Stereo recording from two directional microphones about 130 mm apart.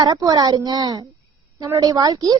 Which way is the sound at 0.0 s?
30° right (ahead or behind).